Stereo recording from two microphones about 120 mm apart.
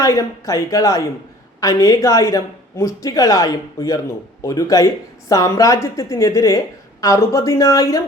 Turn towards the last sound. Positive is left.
turn(degrees=25)  # may be behind; listen again after turning